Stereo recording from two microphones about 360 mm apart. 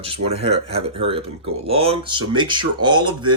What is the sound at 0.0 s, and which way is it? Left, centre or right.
Speech, centre.